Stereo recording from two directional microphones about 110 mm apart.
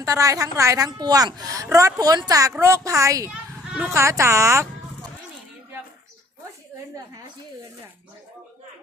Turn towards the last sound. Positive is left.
turn(degrees=-35)  # may be behind; listen again after turning